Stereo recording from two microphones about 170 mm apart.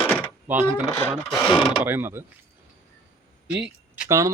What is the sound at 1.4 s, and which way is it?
Mechanisms, 30° left (ahead or behind).